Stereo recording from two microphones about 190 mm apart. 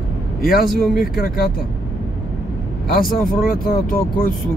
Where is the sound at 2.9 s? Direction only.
50° left (ahead or behind).